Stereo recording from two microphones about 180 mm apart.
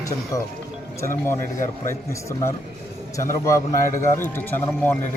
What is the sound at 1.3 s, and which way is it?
Speech, 15° left (ahead or behind).